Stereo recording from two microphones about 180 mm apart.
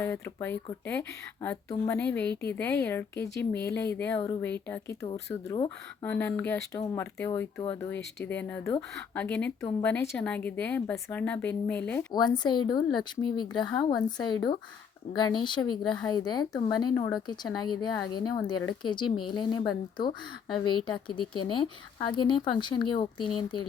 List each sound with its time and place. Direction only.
0.0 s a woman's voice: 10° left (ahead or behind)
12.4 s speech: 25° left (ahead or behind)